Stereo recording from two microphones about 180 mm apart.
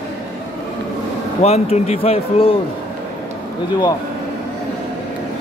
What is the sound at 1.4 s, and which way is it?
A man's voice, 35° left (ahead or behind).